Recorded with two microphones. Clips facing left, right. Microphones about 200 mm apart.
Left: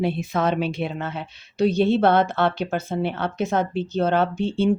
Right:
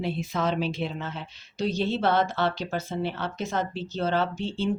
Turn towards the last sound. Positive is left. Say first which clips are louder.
# left 7 dB
turn(degrees=55)  # may be behind; listen again after turning